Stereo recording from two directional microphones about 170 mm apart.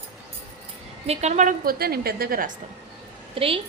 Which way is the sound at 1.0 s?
40° right (ahead or behind).